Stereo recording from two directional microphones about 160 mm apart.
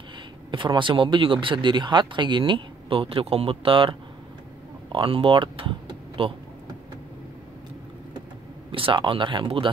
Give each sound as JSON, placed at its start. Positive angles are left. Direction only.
{"t": 0.5, "sound": "speech", "side_deg": -30}
{"t": 4.9, "sound": "speech", "side_deg": -30}
{"t": 8.7, "sound": "speech", "side_deg": -30}